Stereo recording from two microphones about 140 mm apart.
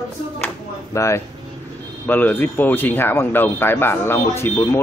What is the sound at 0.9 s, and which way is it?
Speech, 20° left (ahead or behind).